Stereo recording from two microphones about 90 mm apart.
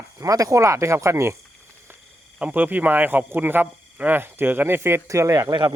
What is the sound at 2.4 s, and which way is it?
Speech, 20° right (ahead or behind).